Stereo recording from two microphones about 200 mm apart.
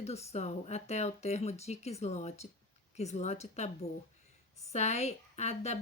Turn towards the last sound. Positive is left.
turn(degrees=35)  # may be behind; listen again after turning